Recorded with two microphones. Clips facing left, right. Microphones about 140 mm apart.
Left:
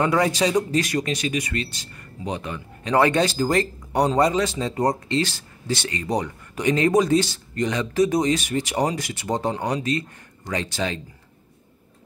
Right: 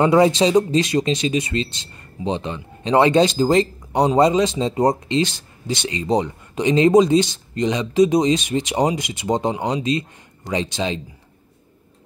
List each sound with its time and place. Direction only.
0.0 s speech: 25° right (ahead or behind)